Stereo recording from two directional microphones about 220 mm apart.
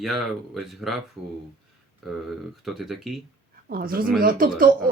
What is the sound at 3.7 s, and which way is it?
Speech, 40° right (ahead or behind).